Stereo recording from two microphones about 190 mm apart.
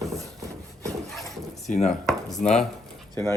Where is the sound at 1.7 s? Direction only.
35° left (ahead or behind).